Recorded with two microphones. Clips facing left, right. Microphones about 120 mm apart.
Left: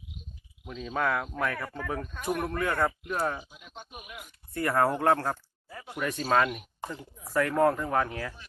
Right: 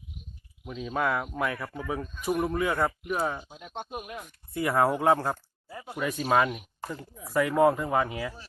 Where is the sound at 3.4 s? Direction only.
85° right.